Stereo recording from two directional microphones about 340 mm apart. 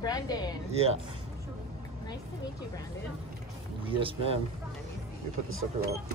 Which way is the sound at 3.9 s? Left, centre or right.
Centre.